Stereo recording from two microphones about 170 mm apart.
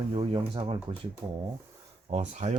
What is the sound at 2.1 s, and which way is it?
Speech, 45° right (ahead or behind).